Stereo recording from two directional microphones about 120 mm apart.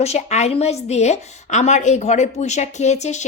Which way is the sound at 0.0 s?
65° left (ahead or behind).